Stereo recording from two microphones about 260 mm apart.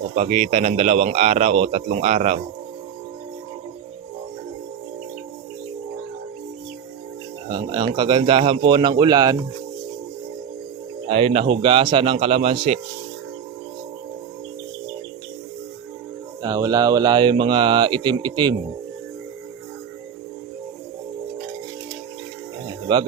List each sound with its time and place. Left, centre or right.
0.1 s a man's voice: right
7.4 s speech: centre
11.1 s a man's voice: right
16.4 s speech: centre